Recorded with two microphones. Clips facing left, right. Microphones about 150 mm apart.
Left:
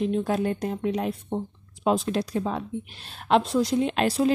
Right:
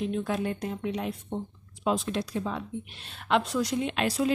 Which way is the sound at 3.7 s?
35° left (ahead or behind).